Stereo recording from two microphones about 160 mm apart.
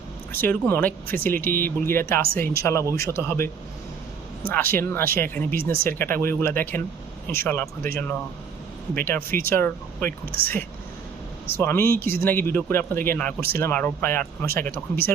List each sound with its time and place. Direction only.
0.3 s speech: 10° left (ahead or behind)
0.9 s speech: 65° right (ahead or behind)
1.2 s speech: 10° left (ahead or behind)
4.4 s speech: 15° left (ahead or behind)
9.0 s speech: 10° left (ahead or behind)
10.1 s speech: 65° right (ahead or behind)
11.5 s speech: 15° left (ahead or behind)